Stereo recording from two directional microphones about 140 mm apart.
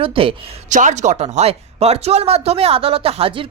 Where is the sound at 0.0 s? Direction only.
40° right (ahead or behind).